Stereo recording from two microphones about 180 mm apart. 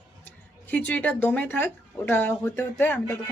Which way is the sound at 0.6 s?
10° left (ahead or behind).